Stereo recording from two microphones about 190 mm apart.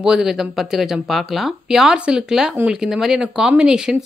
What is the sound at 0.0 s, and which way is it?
Speech, 5° right (ahead or behind).